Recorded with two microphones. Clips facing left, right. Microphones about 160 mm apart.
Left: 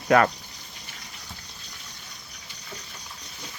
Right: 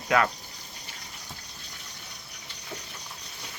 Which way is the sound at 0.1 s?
45° left (ahead or behind).